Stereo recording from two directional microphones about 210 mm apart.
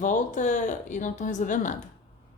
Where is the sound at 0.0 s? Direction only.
35° left (ahead or behind).